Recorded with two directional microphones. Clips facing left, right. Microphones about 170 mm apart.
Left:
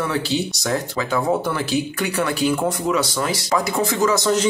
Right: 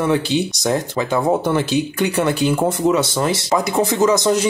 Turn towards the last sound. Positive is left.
turn(degrees=-20)  # may be behind; listen again after turning